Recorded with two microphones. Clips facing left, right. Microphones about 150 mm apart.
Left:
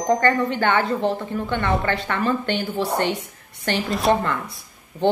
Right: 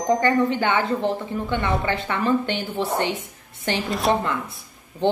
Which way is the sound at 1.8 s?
15° right (ahead or behind).